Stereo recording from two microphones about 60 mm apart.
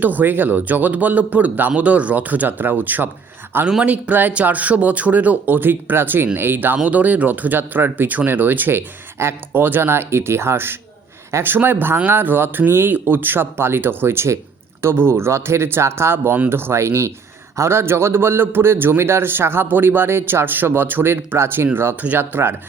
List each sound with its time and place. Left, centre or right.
0.0 s a man's voice: right